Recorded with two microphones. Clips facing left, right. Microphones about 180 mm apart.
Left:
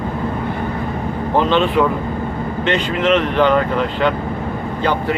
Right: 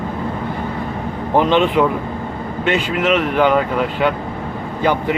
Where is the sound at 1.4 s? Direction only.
15° right (ahead or behind).